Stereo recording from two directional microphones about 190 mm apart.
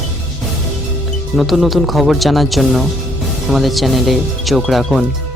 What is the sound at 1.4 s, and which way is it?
Speech, centre (ahead or behind).